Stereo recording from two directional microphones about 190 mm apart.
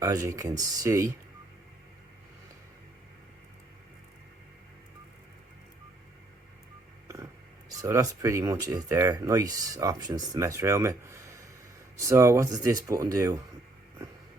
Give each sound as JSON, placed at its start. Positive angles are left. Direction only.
{"t": 0.0, "sound": "speech", "side_deg": -15}
{"t": 7.8, "sound": "speech", "side_deg": -15}